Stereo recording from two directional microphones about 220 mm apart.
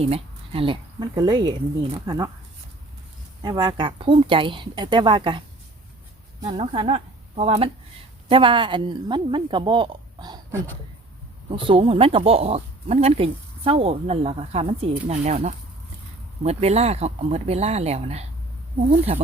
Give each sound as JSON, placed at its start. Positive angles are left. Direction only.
{"t": 0.0, "sound": "speech", "side_deg": -25}
{"t": 3.4, "sound": "speech", "side_deg": -15}
{"t": 6.4, "sound": "a woman's voice", "side_deg": -25}